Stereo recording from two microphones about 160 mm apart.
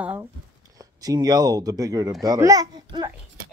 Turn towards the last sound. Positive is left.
turn(degrees=-25)  # may be behind; listen again after turning